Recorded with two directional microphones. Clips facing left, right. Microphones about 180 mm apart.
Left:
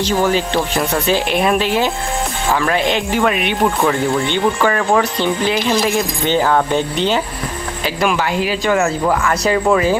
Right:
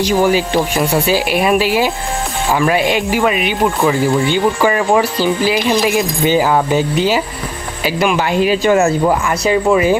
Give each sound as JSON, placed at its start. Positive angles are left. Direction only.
{"t": 0.0, "sound": "speech", "side_deg": -10}
{"t": 8.4, "sound": "speech", "side_deg": -20}
{"t": 9.4, "sound": "speech", "side_deg": -5}